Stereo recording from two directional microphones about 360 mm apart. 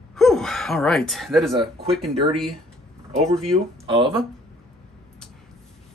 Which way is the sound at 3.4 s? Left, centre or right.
Centre.